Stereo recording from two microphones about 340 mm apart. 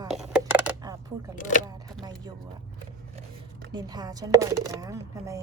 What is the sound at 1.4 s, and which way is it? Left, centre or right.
Speech, left.